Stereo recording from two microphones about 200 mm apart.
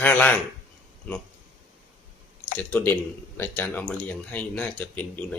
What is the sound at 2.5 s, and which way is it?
Speech, 10° left (ahead or behind).